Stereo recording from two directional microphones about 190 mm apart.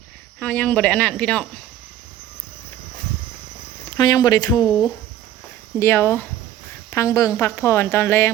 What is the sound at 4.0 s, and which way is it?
A woman's voice, 20° left (ahead or behind).